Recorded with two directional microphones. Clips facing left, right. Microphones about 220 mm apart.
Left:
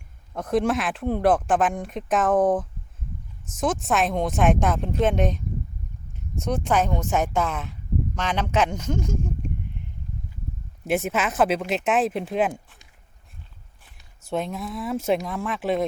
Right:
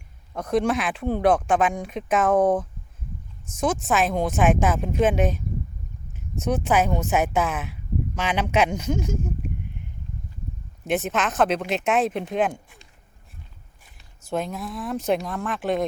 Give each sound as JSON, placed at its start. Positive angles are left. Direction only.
{"t": 0.3, "sound": "speech", "side_deg": 5}
{"t": 10.8, "sound": "speech", "side_deg": 5}
{"t": 14.3, "sound": "speech", "side_deg": 0}